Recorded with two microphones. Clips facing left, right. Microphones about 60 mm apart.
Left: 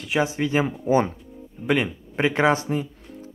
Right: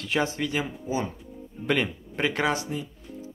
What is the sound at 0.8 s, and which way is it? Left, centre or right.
Speech, left.